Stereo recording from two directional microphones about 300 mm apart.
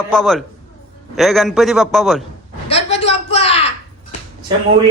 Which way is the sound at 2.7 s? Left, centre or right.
Centre.